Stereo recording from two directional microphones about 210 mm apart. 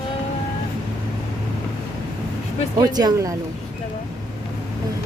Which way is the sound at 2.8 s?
15° right (ahead or behind).